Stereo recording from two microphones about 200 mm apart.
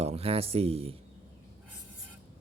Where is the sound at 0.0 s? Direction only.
30° right (ahead or behind).